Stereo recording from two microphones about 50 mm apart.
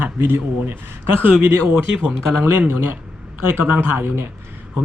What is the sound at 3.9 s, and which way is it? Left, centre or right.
Speech, right.